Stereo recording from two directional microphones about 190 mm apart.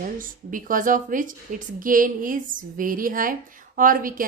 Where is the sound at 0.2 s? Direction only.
45° right (ahead or behind).